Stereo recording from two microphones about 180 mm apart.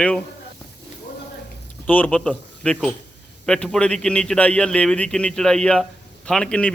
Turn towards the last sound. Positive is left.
turn(degrees=5)  # may be behind; listen again after turning